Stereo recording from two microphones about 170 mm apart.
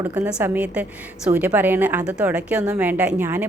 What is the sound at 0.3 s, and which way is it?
A woman's voice, 10° right (ahead or behind).